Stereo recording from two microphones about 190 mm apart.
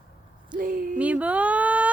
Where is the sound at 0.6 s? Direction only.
45° right (ahead or behind).